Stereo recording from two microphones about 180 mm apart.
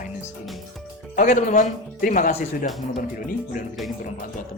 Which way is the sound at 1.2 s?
45° left (ahead or behind).